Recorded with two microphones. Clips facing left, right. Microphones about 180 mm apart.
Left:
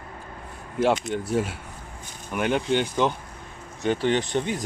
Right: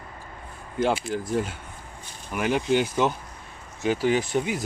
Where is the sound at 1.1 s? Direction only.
Centre (ahead or behind).